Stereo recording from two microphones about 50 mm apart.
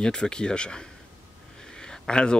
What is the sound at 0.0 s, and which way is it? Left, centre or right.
Speech, centre.